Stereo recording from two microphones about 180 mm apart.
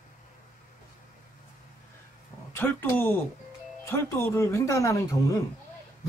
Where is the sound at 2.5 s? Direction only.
10° left (ahead or behind).